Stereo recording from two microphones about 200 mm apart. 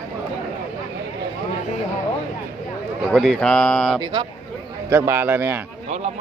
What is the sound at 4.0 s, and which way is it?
Speech, 25° right (ahead or behind).